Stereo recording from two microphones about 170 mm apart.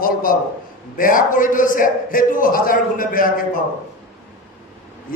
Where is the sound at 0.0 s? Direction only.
55° left (ahead or behind).